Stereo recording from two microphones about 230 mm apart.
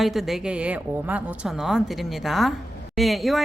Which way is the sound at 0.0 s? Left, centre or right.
Centre.